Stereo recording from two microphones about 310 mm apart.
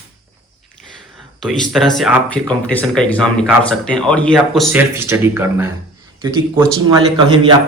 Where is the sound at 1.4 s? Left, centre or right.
Centre.